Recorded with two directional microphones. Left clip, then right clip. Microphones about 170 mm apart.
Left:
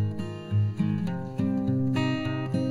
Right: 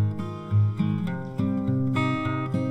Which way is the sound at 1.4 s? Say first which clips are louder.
Even; 25° right (ahead or behind).